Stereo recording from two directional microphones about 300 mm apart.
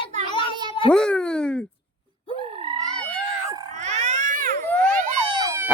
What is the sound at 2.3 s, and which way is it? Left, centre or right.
Frog, centre.